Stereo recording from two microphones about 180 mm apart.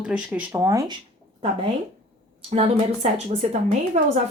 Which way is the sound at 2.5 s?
30° right (ahead or behind).